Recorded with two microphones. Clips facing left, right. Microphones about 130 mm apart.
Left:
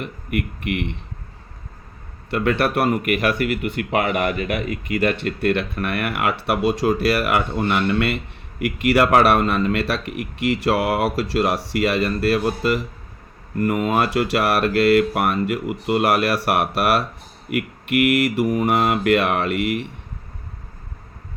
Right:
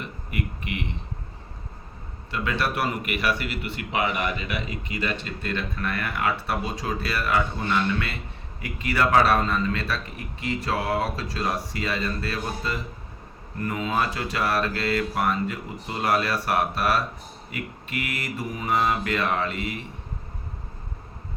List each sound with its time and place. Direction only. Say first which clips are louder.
0.0 s speech: left 6 dB; 60° left (ahead or behind)
2.3 s speech: left 7 dB; 60° left (ahead or behind)